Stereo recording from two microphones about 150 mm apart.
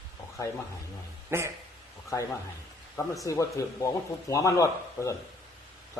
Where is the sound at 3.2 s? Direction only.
20° left (ahead or behind).